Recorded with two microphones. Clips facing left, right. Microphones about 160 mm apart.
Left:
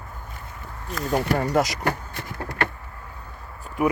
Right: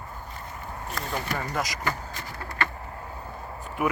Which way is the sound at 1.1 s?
60° left (ahead or behind).